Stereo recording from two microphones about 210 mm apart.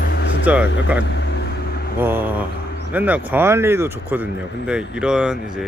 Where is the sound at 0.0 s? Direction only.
50° left (ahead or behind).